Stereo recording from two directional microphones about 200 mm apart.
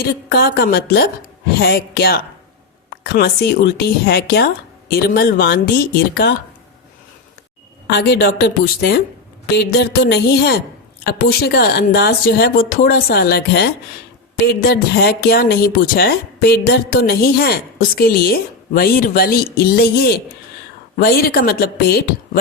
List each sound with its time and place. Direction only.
0.0 s speech: 50° left (ahead or behind)
7.9 s speech: 55° left (ahead or behind)